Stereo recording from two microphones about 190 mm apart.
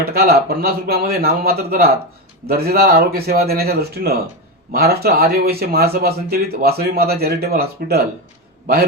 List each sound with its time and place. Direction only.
0.0 s a man's voice: 55° right (ahead or behind)